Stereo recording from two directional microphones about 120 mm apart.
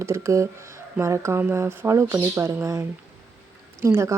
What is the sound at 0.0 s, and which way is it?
A woman's voice, 25° right (ahead or behind).